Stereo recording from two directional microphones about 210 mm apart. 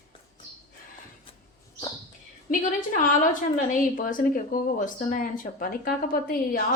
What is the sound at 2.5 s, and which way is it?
A woman's voice, 40° left (ahead or behind).